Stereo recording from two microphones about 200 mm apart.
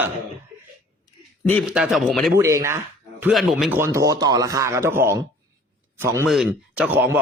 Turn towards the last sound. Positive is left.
turn(degrees=-10)  # may be behind; listen again after turning